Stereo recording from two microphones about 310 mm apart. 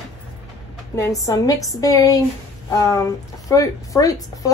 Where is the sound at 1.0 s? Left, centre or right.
Centre.